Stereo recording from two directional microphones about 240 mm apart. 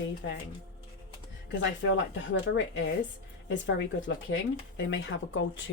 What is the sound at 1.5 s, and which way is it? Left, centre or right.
Speech, left.